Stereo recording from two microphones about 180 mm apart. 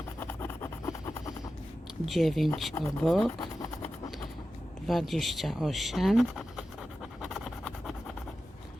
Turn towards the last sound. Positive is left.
turn(degrees=0)  # may be behind; listen again after turning